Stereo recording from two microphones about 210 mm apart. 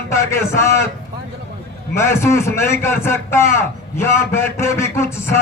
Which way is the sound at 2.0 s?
15° left (ahead or behind).